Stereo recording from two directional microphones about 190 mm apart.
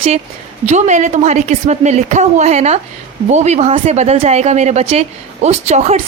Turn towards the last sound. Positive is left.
turn(degrees=-35)  # may be behind; listen again after turning